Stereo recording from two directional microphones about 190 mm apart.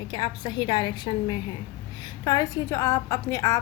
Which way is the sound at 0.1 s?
25° left (ahead or behind).